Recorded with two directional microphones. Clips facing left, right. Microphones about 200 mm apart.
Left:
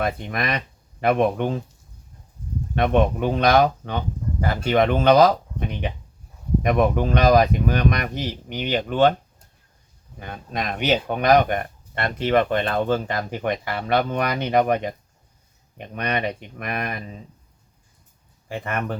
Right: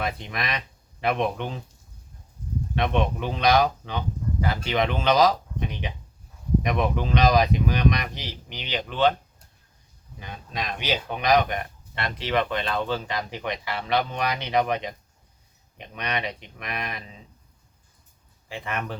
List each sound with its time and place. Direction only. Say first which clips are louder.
0.0 s speech: left 5 dB; 50° left (ahead or behind)
2.7 s speech: left 6 dB; 50° left (ahead or behind)
10.2 s speech: left 4 dB; 55° left (ahead or behind)
18.4 s speech: left 4 dB; 45° left (ahead or behind)